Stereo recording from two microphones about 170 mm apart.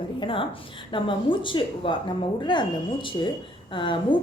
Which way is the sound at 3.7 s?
30° left (ahead or behind).